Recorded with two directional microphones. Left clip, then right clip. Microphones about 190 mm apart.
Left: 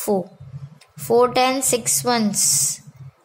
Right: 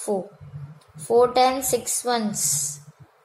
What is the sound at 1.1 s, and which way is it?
Speech, 55° left (ahead or behind).